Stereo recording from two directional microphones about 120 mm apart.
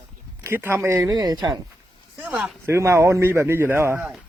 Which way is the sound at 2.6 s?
20° right (ahead or behind).